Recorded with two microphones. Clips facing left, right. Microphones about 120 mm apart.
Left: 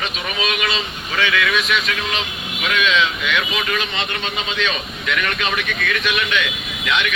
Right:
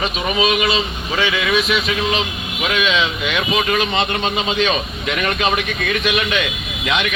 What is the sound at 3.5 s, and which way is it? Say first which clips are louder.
Speech: right 6 dB; 35° right (ahead or behind).